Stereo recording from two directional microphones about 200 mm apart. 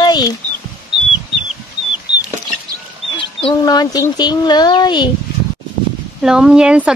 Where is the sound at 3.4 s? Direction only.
20° left (ahead or behind).